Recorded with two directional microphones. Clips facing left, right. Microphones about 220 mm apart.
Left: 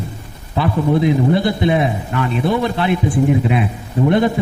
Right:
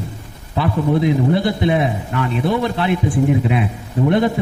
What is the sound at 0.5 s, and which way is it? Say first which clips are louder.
A man's voice: left 1 dB; 20° left (ahead or behind).